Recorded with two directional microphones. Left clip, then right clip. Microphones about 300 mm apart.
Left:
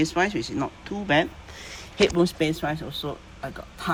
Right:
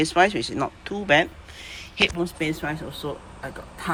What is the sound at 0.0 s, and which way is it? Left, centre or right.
Speech, centre.